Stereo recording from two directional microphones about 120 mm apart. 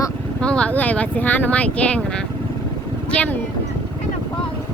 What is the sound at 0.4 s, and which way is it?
Speech, 10° left (ahead or behind).